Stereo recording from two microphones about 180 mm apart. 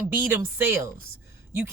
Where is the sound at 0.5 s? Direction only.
15° right (ahead or behind).